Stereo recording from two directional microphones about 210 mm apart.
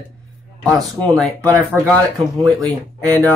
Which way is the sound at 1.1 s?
5° left (ahead or behind).